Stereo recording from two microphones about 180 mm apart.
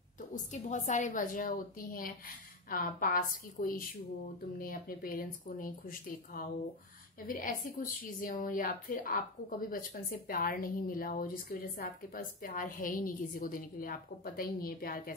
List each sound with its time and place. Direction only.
0.3 s speech: 45° left (ahead or behind)